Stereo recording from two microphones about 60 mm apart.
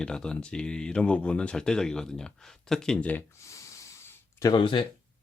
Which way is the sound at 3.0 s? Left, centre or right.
Left.